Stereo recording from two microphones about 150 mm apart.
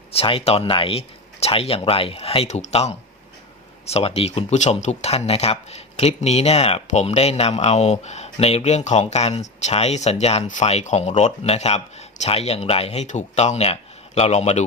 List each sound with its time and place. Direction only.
0.1 s speech: 40° left (ahead or behind)